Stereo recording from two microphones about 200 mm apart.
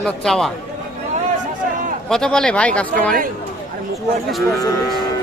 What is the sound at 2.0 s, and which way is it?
Speech, 5° left (ahead or behind).